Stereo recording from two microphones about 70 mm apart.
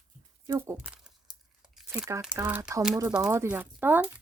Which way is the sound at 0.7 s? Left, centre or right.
Centre.